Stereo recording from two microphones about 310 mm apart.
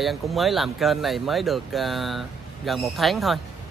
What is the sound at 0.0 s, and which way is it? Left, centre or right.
Speech, centre.